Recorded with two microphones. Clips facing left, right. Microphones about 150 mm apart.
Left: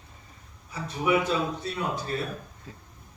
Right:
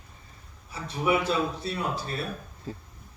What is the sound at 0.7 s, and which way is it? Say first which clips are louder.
A man's voice: left 1 dB; 30° right (ahead or behind).